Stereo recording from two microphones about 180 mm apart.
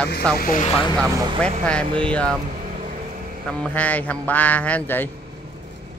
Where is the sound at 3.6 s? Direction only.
10° left (ahead or behind).